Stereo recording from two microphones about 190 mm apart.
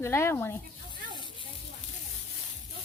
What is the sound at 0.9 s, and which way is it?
Snake, 25° left (ahead or behind).